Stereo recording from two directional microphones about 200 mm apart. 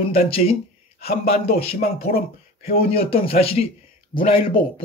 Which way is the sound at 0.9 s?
50° left (ahead or behind).